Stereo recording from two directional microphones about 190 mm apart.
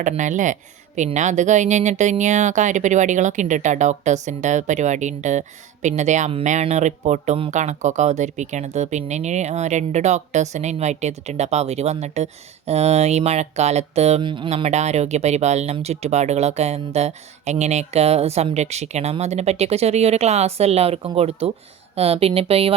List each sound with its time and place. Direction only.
0.0 s speech: 40° right (ahead or behind)